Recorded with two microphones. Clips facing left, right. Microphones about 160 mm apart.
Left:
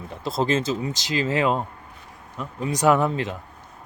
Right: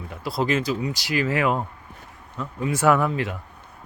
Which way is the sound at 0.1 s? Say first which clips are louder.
Left 1 dB; 25° left (ahead or behind).